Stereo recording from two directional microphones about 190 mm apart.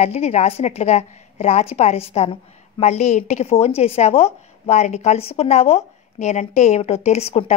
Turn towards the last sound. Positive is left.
turn(degrees=35)  # may be behind; listen again after turning